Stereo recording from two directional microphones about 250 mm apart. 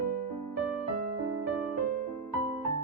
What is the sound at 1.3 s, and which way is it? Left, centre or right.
Music, right.